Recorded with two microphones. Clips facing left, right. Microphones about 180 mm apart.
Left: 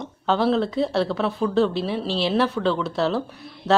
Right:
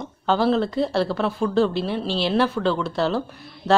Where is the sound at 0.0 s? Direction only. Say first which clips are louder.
Right 1 dB; centre (ahead or behind).